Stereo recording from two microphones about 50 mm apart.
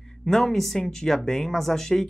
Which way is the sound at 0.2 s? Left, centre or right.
Centre.